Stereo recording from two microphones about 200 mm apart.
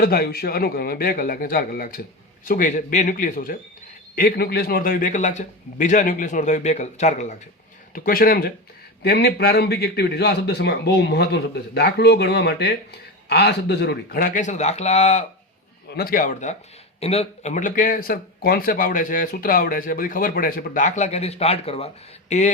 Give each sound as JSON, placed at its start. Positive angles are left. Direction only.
{"t": 0.0, "sound": "a man's voice", "side_deg": 50}
{"t": 7.9, "sound": "a man's voice", "side_deg": 45}
{"t": 15.9, "sound": "speech", "side_deg": 50}